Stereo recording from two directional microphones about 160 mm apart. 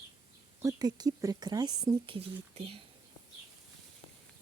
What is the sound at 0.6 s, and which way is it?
Speech, 20° right (ahead or behind).